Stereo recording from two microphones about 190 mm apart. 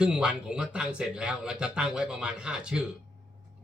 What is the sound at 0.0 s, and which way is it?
Speech, 5° right (ahead or behind).